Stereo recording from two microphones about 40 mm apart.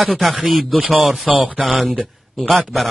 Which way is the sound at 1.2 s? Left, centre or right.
Right.